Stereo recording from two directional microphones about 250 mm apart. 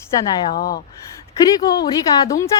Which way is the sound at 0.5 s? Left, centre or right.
Left.